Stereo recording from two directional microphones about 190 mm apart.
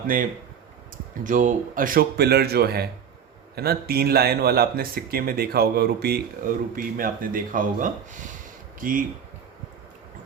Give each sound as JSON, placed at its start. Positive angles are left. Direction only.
{"t": 1.2, "sound": "a man's voice", "side_deg": -45}